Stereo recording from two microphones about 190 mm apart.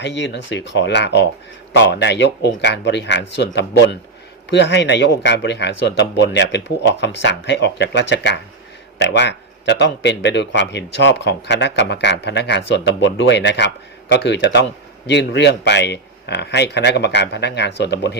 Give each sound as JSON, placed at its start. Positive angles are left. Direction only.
{"t": 0.0, "sound": "a man's voice", "side_deg": 70}